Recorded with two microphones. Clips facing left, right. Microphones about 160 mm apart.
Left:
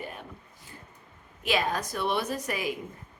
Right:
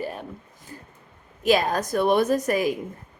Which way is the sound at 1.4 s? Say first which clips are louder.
Right 7 dB; 40° right (ahead or behind).